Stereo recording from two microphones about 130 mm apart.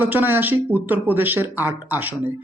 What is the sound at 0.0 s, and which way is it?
Speech, 15° right (ahead or behind).